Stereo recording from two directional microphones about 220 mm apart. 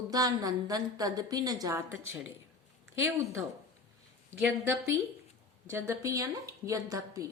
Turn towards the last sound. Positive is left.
turn(degrees=-15)  # may be behind; listen again after turning